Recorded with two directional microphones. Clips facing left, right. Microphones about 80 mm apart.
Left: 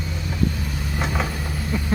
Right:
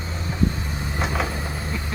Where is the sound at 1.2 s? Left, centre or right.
Right.